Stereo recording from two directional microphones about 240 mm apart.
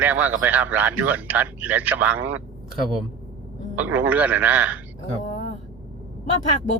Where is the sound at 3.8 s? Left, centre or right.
Centre.